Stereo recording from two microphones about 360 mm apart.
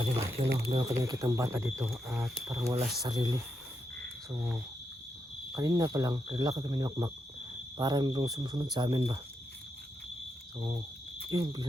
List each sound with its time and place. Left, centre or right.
0.0 s speech: centre
10.6 s speech: centre